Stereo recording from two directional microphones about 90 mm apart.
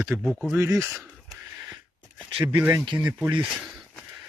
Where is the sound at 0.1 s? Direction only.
5° left (ahead or behind).